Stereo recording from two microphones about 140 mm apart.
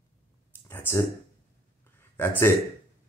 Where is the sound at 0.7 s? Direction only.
20° left (ahead or behind).